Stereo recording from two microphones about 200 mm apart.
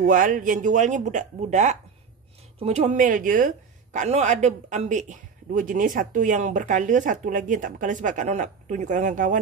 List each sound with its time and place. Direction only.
0.0 s a woman's voice: 40° right (ahead or behind)